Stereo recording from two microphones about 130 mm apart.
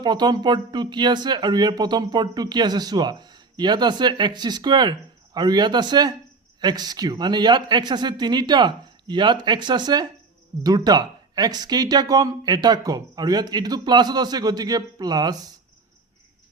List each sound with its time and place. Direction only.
0.0 s speech: 35° right (ahead or behind)